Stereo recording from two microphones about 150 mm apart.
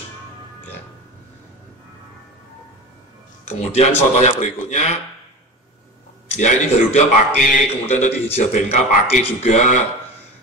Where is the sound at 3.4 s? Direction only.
45° left (ahead or behind).